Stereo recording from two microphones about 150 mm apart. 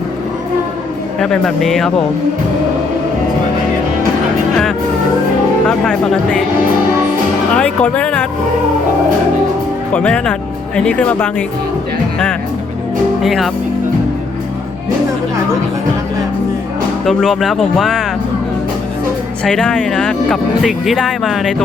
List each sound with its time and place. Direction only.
1.2 s speech: 5° left (ahead or behind)
5.6 s speech: 5° left (ahead or behind)
7.5 s speech: 10° left (ahead or behind)
9.9 s speech: 10° left (ahead or behind)
13.2 s speech: centre (ahead or behind)
17.1 s speech: centre (ahead or behind)
19.5 s speech: 5° left (ahead or behind)